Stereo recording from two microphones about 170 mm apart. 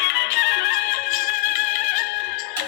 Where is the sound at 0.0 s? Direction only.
70° left (ahead or behind).